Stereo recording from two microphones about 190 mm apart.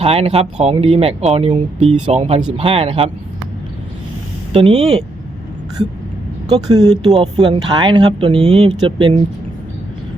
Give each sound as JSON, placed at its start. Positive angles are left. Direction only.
{"t": 0.0, "sound": "speech", "side_deg": -30}
{"t": 4.5, "sound": "speech", "side_deg": -30}
{"t": 6.5, "sound": "speech", "side_deg": -20}